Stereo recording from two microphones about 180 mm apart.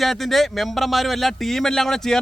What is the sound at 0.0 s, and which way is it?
Speech, centre (ahead or behind).